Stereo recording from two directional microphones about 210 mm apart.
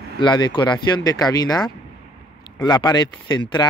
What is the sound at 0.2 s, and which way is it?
Speech, 20° left (ahead or behind).